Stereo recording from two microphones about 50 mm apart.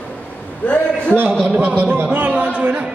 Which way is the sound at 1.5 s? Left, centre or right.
Right.